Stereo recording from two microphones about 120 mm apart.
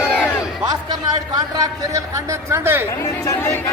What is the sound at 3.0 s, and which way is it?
Speech, 25° left (ahead or behind).